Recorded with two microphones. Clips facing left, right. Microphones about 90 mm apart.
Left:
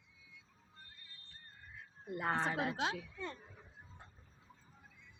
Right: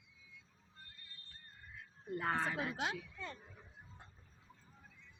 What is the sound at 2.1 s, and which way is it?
Speech, 20° left (ahead or behind).